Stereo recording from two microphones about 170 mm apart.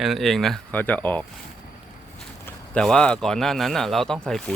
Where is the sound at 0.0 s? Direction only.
Centre (ahead or behind).